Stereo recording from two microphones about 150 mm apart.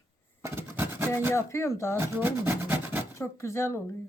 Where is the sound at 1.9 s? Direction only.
15° right (ahead or behind).